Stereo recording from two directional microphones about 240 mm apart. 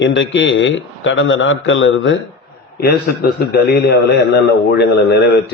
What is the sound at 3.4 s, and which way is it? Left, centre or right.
A man's voice, left.